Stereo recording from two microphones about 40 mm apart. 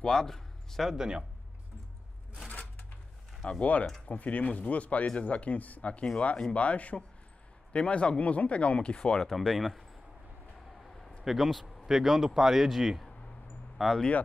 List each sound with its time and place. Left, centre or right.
0.0 s speech: centre
0.9 s speech: centre
3.4 s speech: left
4.1 s speech: left
9.2 s a man's voice: centre
11.2 s a man's voice: centre
13.7 s speech: centre